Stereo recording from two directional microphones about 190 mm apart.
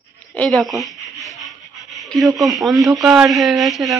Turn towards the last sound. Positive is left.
turn(degrees=0)  # may be behind; listen again after turning